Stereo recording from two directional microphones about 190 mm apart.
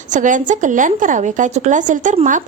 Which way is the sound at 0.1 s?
40° right (ahead or behind).